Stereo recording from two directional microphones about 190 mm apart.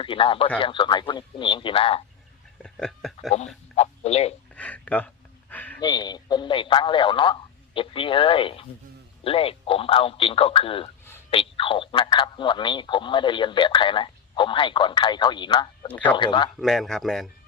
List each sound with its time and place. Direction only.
0.0 s speech: 25° left (ahead or behind)
2.6 s speech: 5° left (ahead or behind)
3.8 s a sound: 35° left (ahead or behind)
4.5 s a sound: 5° left (ahead or behind)
5.8 s speech: 20° left (ahead or behind)
16.6 s speech: centre (ahead or behind)